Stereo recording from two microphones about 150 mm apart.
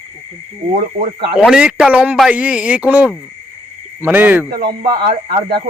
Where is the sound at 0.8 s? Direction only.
75° right (ahead or behind).